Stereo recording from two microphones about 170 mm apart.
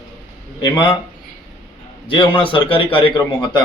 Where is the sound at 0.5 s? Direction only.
25° left (ahead or behind).